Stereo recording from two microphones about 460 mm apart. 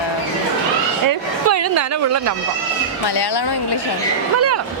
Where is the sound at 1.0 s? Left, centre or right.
Right.